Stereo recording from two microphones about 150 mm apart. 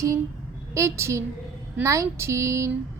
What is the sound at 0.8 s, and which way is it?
Speech, 20° right (ahead or behind).